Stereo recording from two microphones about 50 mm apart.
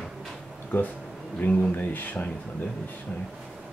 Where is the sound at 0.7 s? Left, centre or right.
Left.